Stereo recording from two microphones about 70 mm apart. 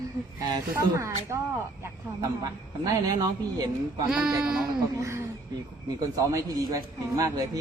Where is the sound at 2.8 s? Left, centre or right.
Right.